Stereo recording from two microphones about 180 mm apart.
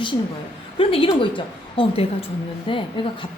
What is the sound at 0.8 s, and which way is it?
A woman's voice, 30° left (ahead or behind).